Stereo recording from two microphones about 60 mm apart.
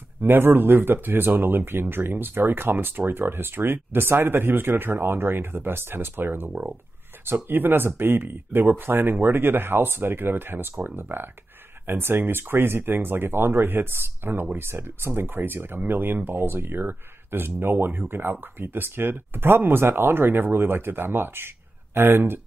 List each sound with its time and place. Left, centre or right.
0.2 s speech: right